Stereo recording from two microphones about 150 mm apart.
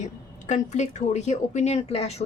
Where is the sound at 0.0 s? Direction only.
50° left (ahead or behind).